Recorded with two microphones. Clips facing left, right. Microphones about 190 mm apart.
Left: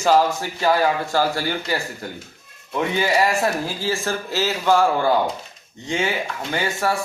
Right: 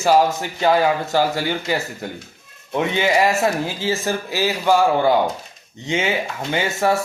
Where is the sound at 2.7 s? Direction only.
20° right (ahead or behind).